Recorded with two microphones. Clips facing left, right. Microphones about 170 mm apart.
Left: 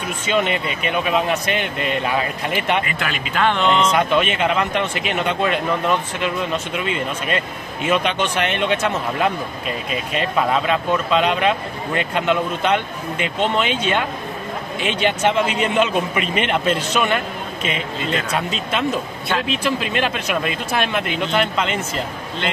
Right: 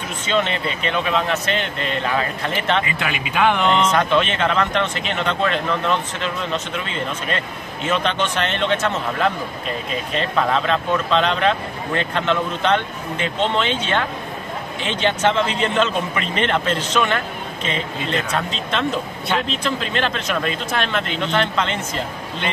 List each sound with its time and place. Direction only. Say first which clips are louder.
0.3 s a man's voice: left 1 dB; 10° left (ahead or behind)
2.9 s speech: even; 20° right (ahead or behind)
3.9 s a man's voice: even; 10° left (ahead or behind)
18.3 s a man's voice: left 1 dB; 10° left (ahead or behind)